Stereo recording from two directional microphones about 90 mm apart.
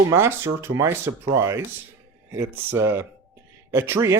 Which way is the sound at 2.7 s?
30° right (ahead or behind).